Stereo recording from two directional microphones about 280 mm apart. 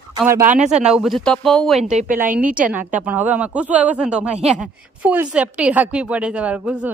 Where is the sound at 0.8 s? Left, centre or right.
Centre.